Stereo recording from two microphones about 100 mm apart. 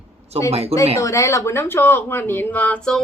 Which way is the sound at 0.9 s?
30° left (ahead or behind).